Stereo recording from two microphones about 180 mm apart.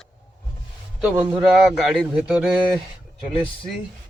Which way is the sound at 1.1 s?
5° right (ahead or behind).